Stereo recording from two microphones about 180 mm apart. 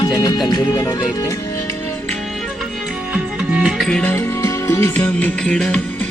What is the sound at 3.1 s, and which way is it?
Music, 5° right (ahead or behind).